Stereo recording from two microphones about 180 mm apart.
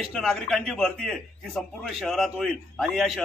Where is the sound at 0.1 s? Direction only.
Centre (ahead or behind).